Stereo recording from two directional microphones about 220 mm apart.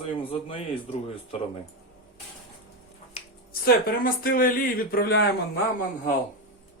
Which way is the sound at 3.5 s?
40° left (ahead or behind).